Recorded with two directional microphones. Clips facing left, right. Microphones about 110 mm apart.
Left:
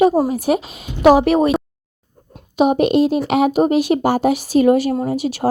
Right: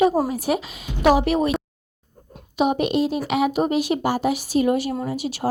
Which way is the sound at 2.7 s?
70° left (ahead or behind).